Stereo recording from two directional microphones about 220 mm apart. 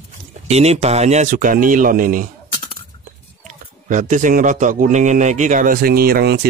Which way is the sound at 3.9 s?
35° right (ahead or behind).